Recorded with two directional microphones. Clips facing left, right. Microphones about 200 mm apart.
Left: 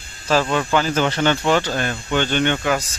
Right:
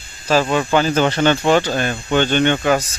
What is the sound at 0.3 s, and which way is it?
Speech, 15° right (ahead or behind).